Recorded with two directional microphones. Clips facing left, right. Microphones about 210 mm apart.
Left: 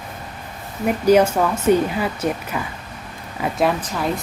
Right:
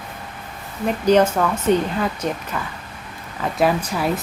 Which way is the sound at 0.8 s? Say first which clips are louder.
Left 1 dB; 10° left (ahead or behind).